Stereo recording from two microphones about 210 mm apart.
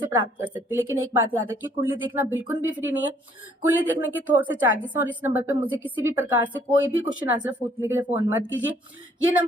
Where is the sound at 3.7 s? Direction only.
10° right (ahead or behind).